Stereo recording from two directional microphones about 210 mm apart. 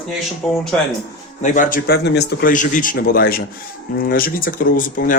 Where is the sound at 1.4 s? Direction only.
40° left (ahead or behind).